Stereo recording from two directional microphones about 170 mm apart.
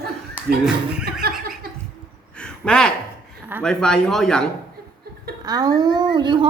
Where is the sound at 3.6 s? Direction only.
5° left (ahead or behind).